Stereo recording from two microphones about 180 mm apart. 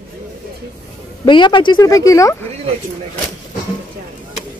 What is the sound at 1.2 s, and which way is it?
Speech, 25° left (ahead or behind).